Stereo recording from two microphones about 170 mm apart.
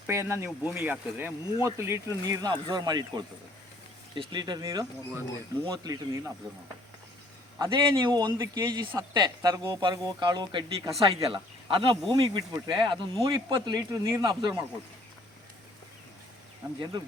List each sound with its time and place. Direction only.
0.1 s speech: 15° right (ahead or behind)
7.6 s speech: 30° right (ahead or behind)